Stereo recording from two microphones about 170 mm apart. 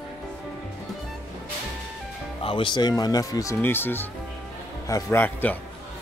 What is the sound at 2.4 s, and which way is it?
A man's voice, 30° left (ahead or behind).